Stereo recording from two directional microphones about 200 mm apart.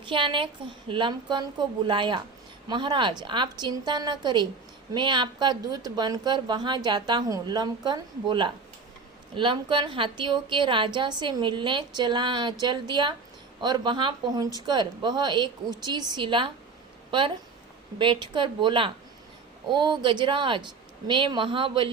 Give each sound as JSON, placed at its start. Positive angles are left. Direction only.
{"t": 0.0, "sound": "a woman's voice", "side_deg": -25}